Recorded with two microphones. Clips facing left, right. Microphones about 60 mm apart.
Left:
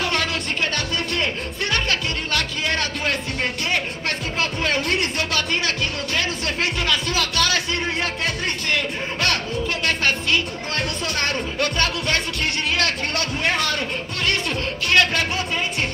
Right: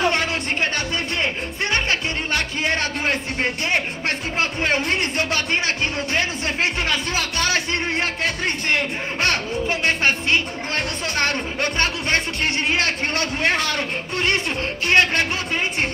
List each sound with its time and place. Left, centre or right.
0.0 s music: right
9.8 s speech: right